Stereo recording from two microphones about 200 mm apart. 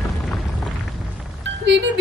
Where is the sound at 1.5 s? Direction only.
70° right (ahead or behind).